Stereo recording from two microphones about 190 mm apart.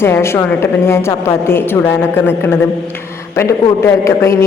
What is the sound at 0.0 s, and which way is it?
A woman's voice, 15° left (ahead or behind).